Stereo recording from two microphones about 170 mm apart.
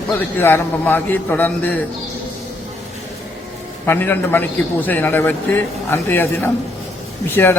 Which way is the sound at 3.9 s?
10° left (ahead or behind).